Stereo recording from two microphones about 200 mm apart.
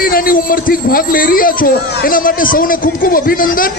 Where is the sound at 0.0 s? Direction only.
45° left (ahead or behind).